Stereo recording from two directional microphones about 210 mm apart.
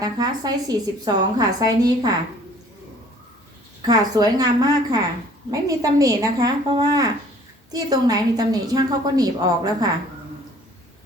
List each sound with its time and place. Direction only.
0.0 s a woman's voice: 20° right (ahead or behind)
3.8 s a woman's voice: 20° right (ahead or behind)